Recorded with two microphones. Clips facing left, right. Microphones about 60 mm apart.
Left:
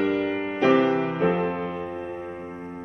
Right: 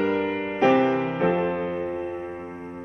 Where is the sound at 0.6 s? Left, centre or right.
Right.